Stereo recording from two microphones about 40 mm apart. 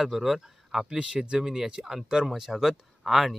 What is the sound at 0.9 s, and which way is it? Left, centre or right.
Speech, right.